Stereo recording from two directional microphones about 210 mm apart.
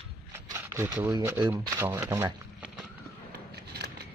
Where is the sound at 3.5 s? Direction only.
50° right (ahead or behind).